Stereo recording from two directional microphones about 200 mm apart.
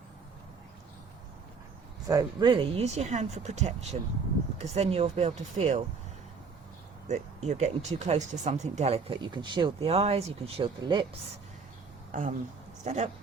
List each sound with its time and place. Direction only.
2.0 s speech: 20° right (ahead or behind)
7.1 s speech: 35° right (ahead or behind)
12.1 s speech: 40° right (ahead or behind)